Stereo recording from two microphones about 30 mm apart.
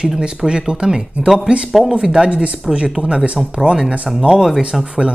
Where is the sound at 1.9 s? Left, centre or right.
Right.